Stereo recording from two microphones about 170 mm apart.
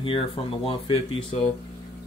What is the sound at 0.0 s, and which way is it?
Speech, 30° left (ahead or behind).